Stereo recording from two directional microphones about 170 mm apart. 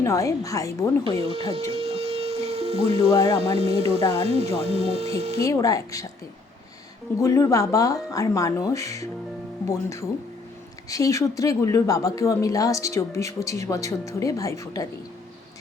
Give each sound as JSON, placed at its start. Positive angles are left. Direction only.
{"t": 0.0, "sound": "a woman's voice", "side_deg": 15}
{"t": 1.0, "sound": "a sound", "side_deg": -35}
{"t": 3.2, "sound": "speech", "side_deg": -35}
{"t": 5.4, "sound": "speech", "side_deg": 20}
{"t": 7.2, "sound": "a woman's voice", "side_deg": 20}